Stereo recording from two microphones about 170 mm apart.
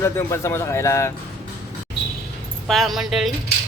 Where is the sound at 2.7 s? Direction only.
Centre (ahead or behind).